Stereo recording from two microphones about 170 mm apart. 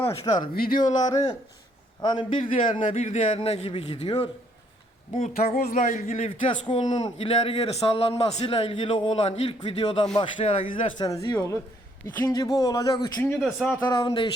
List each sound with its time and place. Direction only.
0.1 s speech: 25° left (ahead or behind)
0.5 s speech: 60° left (ahead or behind)
0.9 s speech: 20° left (ahead or behind)
2.8 s a man's voice: 45° left (ahead or behind); by 13.2 s 20° left (ahead or behind)
13.4 s a man's voice: 5° left (ahead or behind)
13.8 s speech: 25° left (ahead or behind)